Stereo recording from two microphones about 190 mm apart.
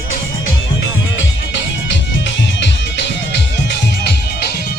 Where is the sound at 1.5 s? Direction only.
70° left (ahead or behind).